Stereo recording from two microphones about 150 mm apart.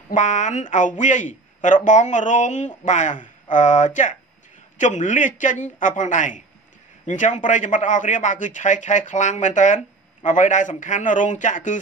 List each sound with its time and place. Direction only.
0.1 s speech: 55° left (ahead or behind)